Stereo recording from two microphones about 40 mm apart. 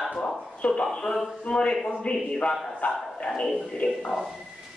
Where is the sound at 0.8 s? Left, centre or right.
Centre.